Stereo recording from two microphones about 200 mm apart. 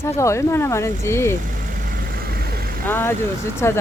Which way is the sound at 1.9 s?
45° right (ahead or behind).